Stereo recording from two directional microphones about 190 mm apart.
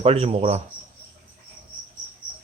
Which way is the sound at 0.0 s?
30° right (ahead or behind).